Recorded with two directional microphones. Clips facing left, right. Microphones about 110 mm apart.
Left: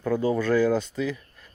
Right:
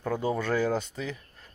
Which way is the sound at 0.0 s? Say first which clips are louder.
Left 5 dB; 30° right (ahead or behind).